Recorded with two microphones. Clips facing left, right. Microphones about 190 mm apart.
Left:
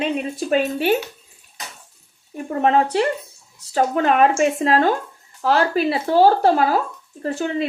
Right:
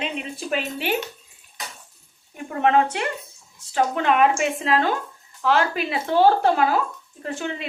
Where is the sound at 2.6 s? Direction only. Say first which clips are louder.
Left 2 dB; 35° left (ahead or behind).